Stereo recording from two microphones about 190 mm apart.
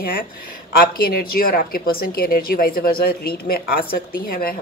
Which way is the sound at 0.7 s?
50° left (ahead or behind).